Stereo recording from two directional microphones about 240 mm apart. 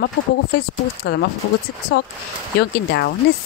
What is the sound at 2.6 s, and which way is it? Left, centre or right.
Speech, left.